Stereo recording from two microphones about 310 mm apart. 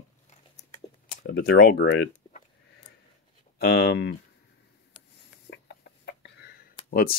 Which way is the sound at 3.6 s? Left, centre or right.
Left.